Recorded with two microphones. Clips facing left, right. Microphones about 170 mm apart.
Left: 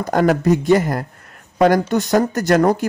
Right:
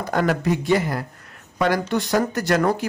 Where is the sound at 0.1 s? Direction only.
45° left (ahead or behind).